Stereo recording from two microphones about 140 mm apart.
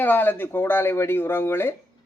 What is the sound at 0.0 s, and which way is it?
A man's voice, 15° left (ahead or behind).